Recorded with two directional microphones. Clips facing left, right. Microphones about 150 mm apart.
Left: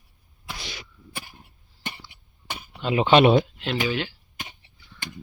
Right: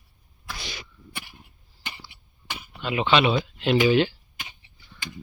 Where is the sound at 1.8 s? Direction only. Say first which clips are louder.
Left 4 dB; 45° left (ahead or behind).